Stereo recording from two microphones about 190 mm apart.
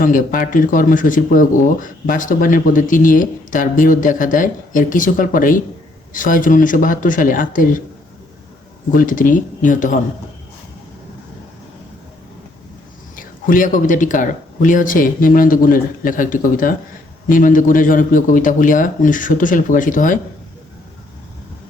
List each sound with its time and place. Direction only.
0.0 s speech: 45° left (ahead or behind)
8.9 s speech: 45° left (ahead or behind)
13.1 s speech: 45° left (ahead or behind)